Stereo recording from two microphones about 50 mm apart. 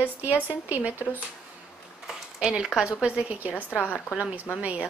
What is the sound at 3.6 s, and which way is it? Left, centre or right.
Speech, left.